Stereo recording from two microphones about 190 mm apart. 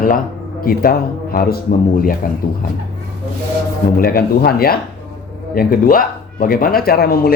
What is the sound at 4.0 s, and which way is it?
Speech, 50° left (ahead or behind).